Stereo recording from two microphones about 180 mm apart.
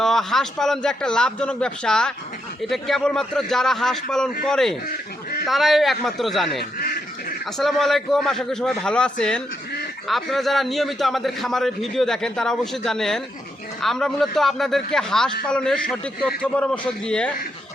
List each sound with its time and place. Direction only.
0.0 s a man's voice: centre (ahead or behind)
6.7 s duck: 55° left (ahead or behind)
7.6 s a man's voice: centre (ahead or behind)